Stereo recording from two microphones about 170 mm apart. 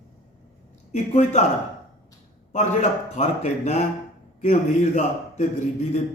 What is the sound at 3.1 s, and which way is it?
A man's voice, 40° left (ahead or behind).